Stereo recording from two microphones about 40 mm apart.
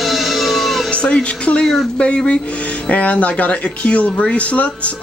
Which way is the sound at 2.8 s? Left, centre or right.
Left.